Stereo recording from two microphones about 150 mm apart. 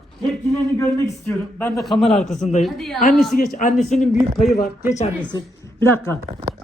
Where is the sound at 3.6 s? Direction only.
65° left (ahead or behind).